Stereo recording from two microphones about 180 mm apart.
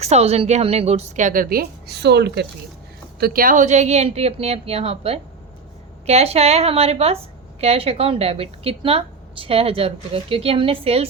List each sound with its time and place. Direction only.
0.0 s a woman's voice: 35° right (ahead or behind); by 2.5 s 65° right (ahead or behind)
3.2 s a woman's voice: 55° right (ahead or behind); by 11.0 s 30° right (ahead or behind)